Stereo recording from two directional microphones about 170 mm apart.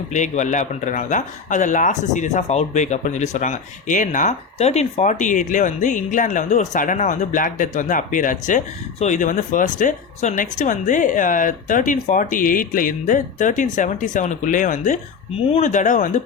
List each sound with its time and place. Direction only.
0.1 s speech: 45° left (ahead or behind)